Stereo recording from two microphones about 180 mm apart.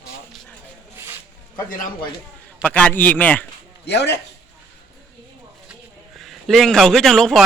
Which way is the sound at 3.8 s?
65° left (ahead or behind).